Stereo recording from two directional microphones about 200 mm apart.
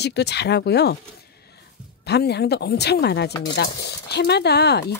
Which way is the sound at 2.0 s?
55° left (ahead or behind).